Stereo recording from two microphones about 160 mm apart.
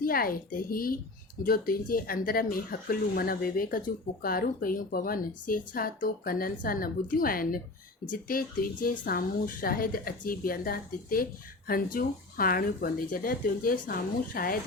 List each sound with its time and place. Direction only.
0.0 s speech: 65° left (ahead or behind)